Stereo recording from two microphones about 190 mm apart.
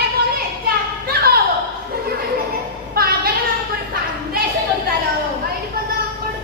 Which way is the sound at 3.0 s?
50° right (ahead or behind).